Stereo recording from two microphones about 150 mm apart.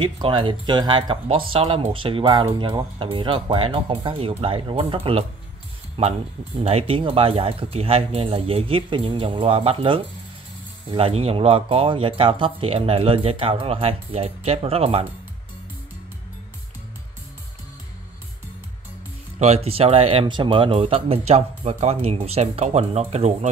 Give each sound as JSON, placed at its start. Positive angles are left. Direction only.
{"t": 0.0, "sound": "speech", "side_deg": -35}
{"t": 19.3, "sound": "speech", "side_deg": -45}